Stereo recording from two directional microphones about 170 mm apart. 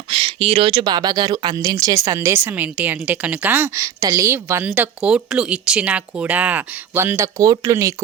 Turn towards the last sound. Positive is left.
turn(degrees=-20)  # may be behind; listen again after turning